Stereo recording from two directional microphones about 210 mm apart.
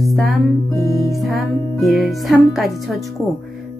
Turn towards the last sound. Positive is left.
turn(degrees=0)  # may be behind; listen again after turning